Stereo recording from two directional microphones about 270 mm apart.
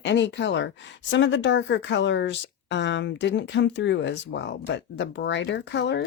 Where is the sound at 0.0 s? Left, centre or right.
Left.